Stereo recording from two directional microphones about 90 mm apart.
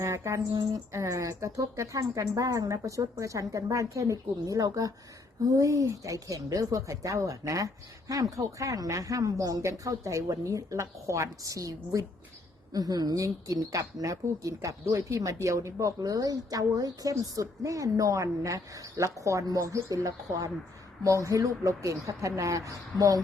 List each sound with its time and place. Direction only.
0.0 s a woman's voice: 35° right (ahead or behind)